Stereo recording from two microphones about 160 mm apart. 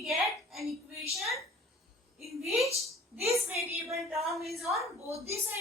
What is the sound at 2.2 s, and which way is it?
Speech, centre (ahead or behind).